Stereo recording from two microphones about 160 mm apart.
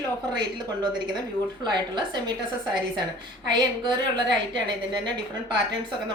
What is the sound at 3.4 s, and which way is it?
Speech, 25° right (ahead or behind).